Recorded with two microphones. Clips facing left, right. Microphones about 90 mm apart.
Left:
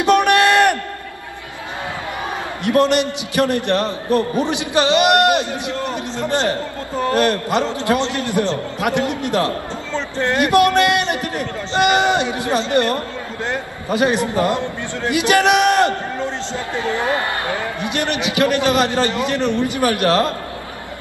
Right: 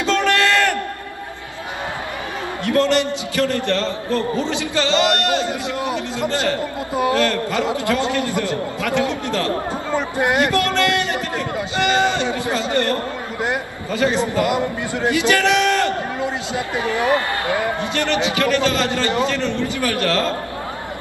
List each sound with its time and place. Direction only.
0.0 s a sound: 20° left (ahead or behind)
2.6 s a man's voice: 20° left (ahead or behind)
9.9 s speech: 10° right (ahead or behind)
10.4 s a man's voice: 20° left (ahead or behind)
17.8 s a man's voice: 20° left (ahead or behind)